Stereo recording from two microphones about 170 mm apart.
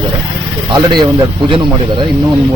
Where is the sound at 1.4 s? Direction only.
30° right (ahead or behind).